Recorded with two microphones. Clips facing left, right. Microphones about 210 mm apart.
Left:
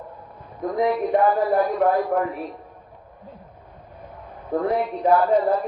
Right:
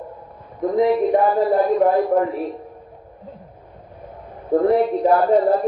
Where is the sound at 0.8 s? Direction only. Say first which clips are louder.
Right 3 dB; 25° right (ahead or behind).